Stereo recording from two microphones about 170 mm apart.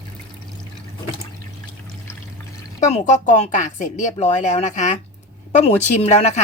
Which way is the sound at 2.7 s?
45° left (ahead or behind).